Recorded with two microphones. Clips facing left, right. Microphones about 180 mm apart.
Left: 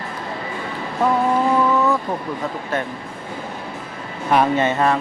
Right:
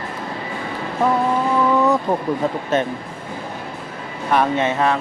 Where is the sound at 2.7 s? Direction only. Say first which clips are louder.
Right 5 dB; 20° right (ahead or behind).